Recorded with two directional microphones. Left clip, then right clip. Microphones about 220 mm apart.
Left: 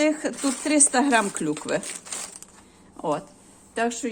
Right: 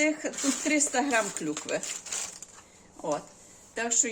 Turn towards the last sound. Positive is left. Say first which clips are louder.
# left 3 dB
turn(degrees=20)  # may be behind; listen again after turning